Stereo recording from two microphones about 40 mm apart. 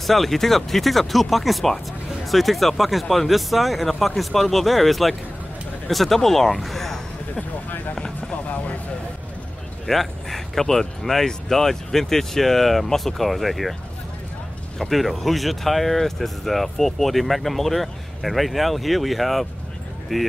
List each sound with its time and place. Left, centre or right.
0.0 s speech: centre
8.2 s music: left
9.8 s speech: centre
14.8 s speech: centre